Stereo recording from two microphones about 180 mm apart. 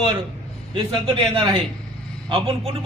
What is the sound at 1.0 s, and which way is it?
A man's voice, 30° right (ahead or behind).